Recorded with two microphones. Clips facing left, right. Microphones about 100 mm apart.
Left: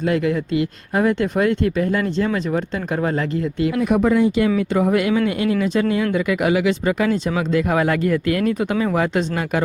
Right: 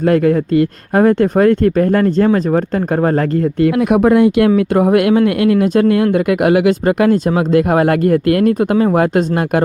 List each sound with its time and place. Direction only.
0.0 s speech: 45° right (ahead or behind)
3.8 s speech: 65° right (ahead or behind)